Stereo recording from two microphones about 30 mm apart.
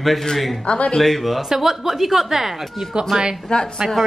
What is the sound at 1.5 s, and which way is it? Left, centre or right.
A woman's voice, centre.